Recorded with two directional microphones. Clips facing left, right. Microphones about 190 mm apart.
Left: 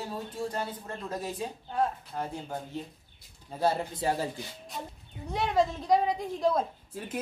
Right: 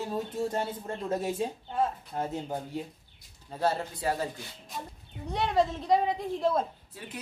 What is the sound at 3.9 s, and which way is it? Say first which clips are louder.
Speech: left 1 dB; 25° left (ahead or behind).